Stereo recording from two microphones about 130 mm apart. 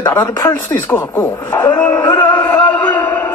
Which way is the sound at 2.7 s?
10° left (ahead or behind).